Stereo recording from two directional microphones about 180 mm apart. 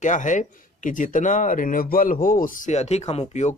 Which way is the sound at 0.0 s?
45° left (ahead or behind).